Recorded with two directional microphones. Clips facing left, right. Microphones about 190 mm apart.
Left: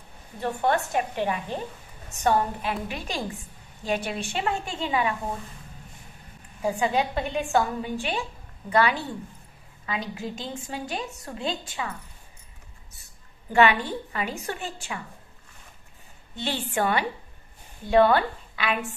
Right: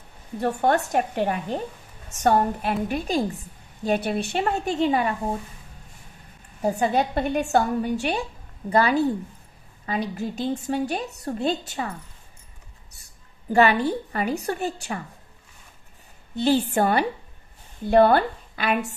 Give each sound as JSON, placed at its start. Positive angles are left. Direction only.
{"t": 0.4, "sound": "a woman's voice", "side_deg": -45}
{"t": 6.6, "sound": "a woman's voice", "side_deg": -40}
{"t": 13.0, "sound": "a sound", "side_deg": -35}
{"t": 14.4, "sound": "a woman's voice", "side_deg": -40}
{"t": 16.3, "sound": "a woman's voice", "side_deg": -40}